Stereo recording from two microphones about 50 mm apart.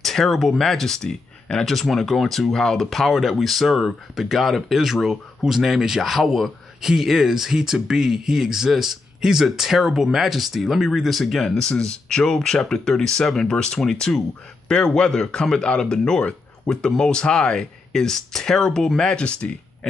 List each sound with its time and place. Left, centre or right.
0.0 s speech: centre